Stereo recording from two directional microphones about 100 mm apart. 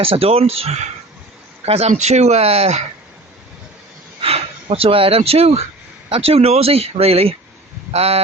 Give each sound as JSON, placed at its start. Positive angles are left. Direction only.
{"t": 0.0, "sound": "speech", "side_deg": -70}
{"t": 4.2, "sound": "speech", "side_deg": -75}
{"t": 6.1, "sound": "speech", "side_deg": -70}